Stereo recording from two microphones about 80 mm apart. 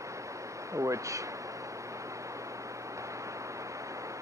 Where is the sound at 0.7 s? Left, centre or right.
Right.